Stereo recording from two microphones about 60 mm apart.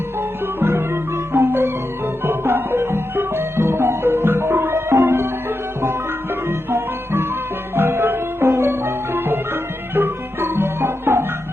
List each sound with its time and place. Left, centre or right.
0.6 s music: right
6.5 s music: right